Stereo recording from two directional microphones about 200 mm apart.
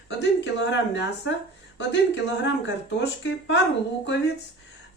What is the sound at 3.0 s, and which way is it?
Speech, 60° left (ahead or behind).